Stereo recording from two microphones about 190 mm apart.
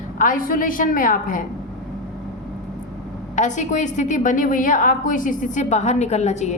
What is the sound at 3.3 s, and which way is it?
A woman's voice, 40° left (ahead or behind).